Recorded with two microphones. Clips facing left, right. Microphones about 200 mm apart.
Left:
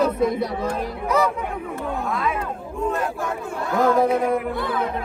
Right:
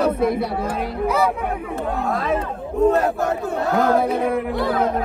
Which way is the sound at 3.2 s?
60° right (ahead or behind).